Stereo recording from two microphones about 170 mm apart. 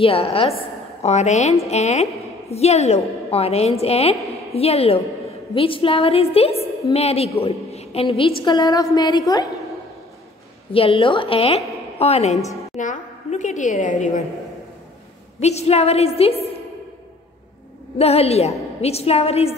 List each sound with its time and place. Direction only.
0.0 s a woman's voice: 35° left (ahead or behind)
10.7 s a woman's voice: 35° left (ahead or behind)
15.4 s a woman's voice: 40° left (ahead or behind)
17.9 s a woman's voice: 35° left (ahead or behind)